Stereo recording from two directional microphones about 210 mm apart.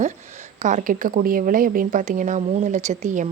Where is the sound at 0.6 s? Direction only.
35° right (ahead or behind).